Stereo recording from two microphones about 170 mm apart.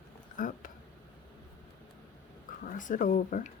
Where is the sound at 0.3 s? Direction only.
50° left (ahead or behind).